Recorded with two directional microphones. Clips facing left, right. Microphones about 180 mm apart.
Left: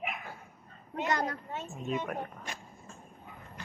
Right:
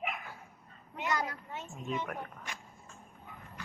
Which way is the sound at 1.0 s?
40° left (ahead or behind).